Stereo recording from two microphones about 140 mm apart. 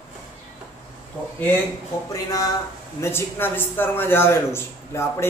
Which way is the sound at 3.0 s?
20° left (ahead or behind).